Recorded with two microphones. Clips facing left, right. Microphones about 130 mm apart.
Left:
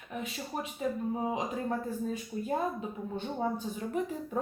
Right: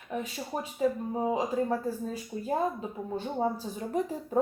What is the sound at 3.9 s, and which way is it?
Speech, 35° right (ahead or behind).